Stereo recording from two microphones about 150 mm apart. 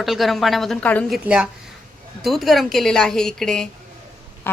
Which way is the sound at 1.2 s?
5° right (ahead or behind).